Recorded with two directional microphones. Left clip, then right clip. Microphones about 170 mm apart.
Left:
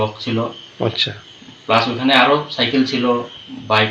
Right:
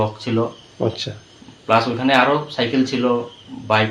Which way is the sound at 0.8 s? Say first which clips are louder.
Left 4 dB; 10° right (ahead or behind).